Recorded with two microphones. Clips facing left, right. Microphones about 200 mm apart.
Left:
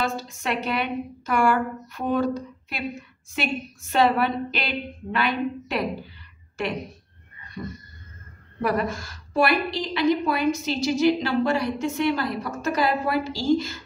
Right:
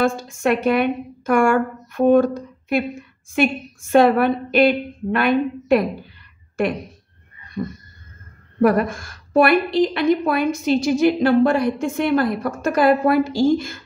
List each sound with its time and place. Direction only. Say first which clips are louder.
0.0 s a woman's voice: right 8 dB; 50° right (ahead or behind)
3.9 s a woman's voice: right 7 dB; 50° right (ahead or behind)
8.5 s a woman's voice: right 8 dB; 50° right (ahead or behind)